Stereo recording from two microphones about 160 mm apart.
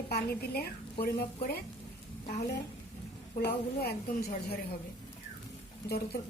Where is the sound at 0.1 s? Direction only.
75° left (ahead or behind).